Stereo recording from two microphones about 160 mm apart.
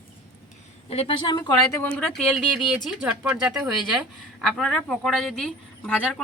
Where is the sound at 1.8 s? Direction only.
5° left (ahead or behind).